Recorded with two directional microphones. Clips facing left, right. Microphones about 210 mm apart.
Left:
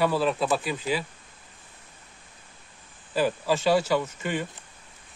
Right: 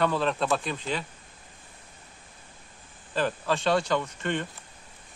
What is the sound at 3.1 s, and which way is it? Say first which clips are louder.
Speech: left 3 dB; 10° left (ahead or behind).